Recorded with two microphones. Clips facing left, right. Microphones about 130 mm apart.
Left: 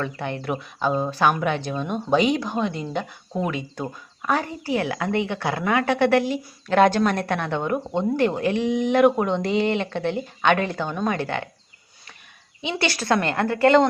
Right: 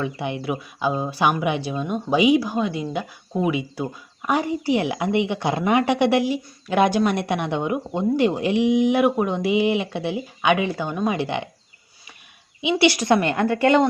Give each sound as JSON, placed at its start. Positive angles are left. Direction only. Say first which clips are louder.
{"t": 0.0, "sound": "speech", "louder": "right 2 dB", "side_deg": -10}
{"t": 12.6, "sound": "speech", "louder": "right 5 dB", "side_deg": -10}
{"t": 13.2, "sound": "a woman's voice", "louder": "right 2 dB", "side_deg": 35}